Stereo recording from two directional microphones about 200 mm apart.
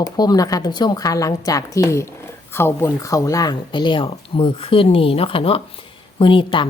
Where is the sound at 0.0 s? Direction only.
20° left (ahead or behind).